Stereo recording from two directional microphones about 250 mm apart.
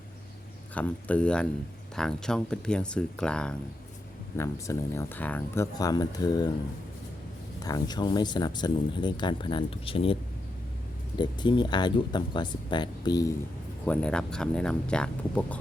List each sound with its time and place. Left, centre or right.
0.7 s speech: centre
7.6 s speech: centre
11.2 s speech: centre
13.8 s speech: centre